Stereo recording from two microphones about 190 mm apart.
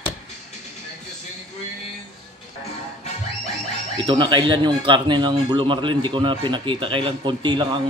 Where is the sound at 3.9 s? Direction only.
25° right (ahead or behind).